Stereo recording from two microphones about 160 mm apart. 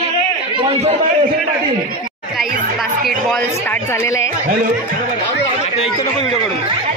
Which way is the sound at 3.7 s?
15° left (ahead or behind).